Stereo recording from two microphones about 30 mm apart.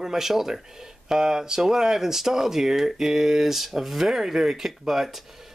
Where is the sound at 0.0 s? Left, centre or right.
Centre.